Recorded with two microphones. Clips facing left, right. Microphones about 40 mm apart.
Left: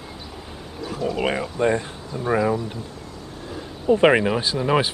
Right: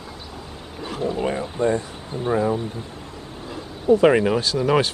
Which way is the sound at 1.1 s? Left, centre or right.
Left.